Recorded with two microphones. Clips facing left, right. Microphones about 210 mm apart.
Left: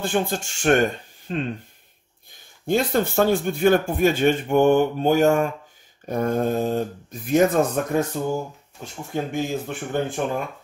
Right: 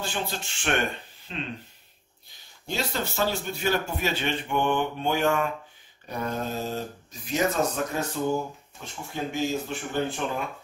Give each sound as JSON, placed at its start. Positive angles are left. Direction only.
{"t": 0.0, "sound": "a man's voice", "side_deg": 50}
{"t": 8.8, "sound": "speech", "side_deg": 40}
{"t": 9.1, "sound": "a man's voice", "side_deg": 55}